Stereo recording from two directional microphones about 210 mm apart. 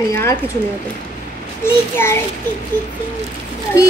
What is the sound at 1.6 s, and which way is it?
Speech, 10° left (ahead or behind).